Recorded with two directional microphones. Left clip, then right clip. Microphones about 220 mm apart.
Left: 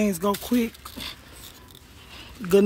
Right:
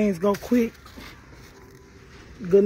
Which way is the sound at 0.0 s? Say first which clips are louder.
Right 2 dB; 10° left (ahead or behind).